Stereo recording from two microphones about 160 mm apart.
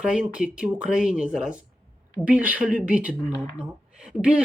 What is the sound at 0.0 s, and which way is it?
Speech, 5° right (ahead or behind).